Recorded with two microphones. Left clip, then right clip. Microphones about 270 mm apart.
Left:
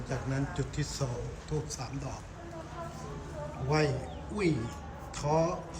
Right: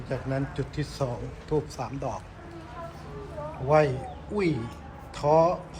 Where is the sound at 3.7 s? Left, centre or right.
Centre.